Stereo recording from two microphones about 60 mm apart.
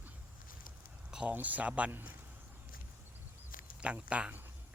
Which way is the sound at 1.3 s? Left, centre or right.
Right.